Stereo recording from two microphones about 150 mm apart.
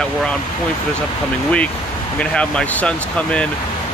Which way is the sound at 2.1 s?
5° left (ahead or behind).